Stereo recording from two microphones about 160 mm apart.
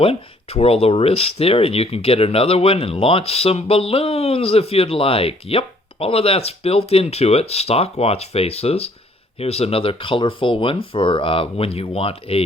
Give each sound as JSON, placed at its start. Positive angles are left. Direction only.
{"t": 0.0, "sound": "speech", "side_deg": 35}